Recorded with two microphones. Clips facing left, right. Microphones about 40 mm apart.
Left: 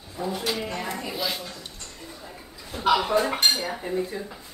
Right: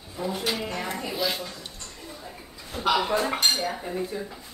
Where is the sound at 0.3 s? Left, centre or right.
Right.